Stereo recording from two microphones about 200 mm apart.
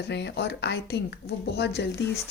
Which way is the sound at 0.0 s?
60° left (ahead or behind).